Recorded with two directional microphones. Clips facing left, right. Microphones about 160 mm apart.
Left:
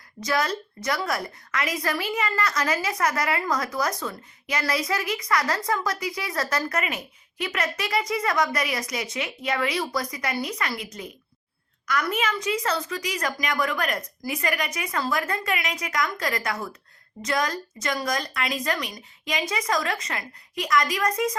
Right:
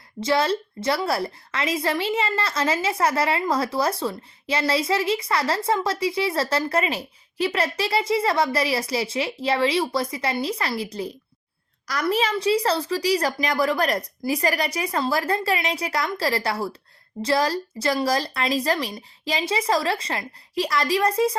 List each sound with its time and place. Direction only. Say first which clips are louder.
0.2 s a woman's voice: right 4 dB; 25° right (ahead or behind)